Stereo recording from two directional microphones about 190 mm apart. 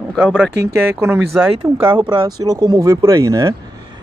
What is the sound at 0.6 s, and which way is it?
Speech, 15° right (ahead or behind).